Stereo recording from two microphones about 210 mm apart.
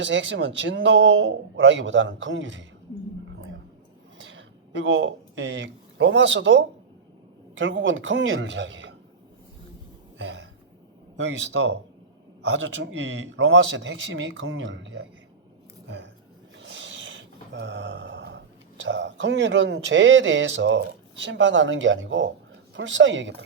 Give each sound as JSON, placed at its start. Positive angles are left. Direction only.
{"t": 0.0, "sound": "speech", "side_deg": -60}
{"t": 4.2, "sound": "speech", "side_deg": -65}
{"t": 10.2, "sound": "throat clearing", "side_deg": -60}
{"t": 11.2, "sound": "speech", "side_deg": -55}
{"t": 16.6, "sound": "a sound", "side_deg": -60}
{"t": 21.2, "sound": "speech", "side_deg": -60}